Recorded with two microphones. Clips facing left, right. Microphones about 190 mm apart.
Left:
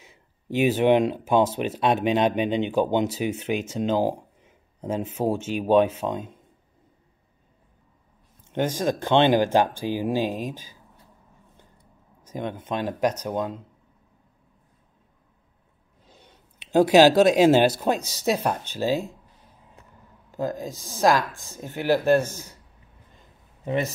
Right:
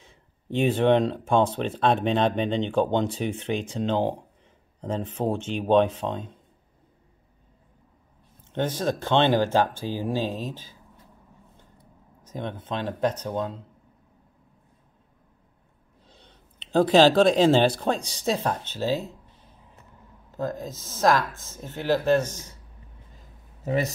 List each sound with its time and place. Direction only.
0.0 s speech: 10° left (ahead or behind)
8.7 s speech: 15° left (ahead or behind)
12.3 s speech: 10° left (ahead or behind)
16.1 s speech: 10° left (ahead or behind)
20.3 s speech: 15° left (ahead or behind)
21.3 s speech: 20° right (ahead or behind)
21.5 s speech: 15° left (ahead or behind)
23.1 s a sound: centre (ahead or behind)